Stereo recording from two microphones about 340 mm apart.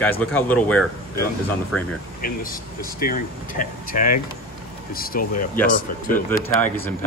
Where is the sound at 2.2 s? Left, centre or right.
Left.